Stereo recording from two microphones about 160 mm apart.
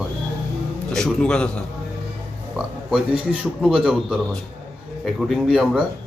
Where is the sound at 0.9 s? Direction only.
5° left (ahead or behind).